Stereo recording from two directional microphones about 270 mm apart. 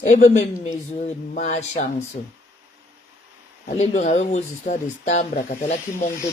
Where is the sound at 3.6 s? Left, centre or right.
Left.